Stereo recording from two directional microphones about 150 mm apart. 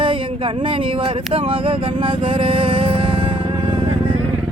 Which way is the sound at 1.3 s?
35° right (ahead or behind).